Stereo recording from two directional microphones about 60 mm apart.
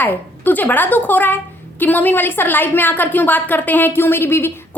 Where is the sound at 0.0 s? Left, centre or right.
Left.